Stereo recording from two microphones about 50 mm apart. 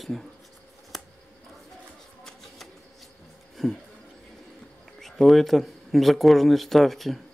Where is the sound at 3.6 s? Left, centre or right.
Centre.